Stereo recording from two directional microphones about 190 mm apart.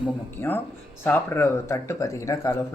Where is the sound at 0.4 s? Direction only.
15° left (ahead or behind).